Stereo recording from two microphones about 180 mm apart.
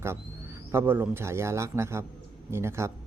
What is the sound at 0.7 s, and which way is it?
Speech, 10° right (ahead or behind).